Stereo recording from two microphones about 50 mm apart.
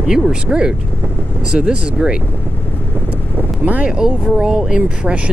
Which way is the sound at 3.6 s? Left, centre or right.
Right.